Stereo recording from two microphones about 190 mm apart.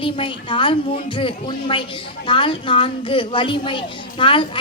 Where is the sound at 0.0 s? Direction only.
25° left (ahead or behind).